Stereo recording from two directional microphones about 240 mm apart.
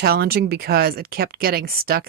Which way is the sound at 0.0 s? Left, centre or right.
Right.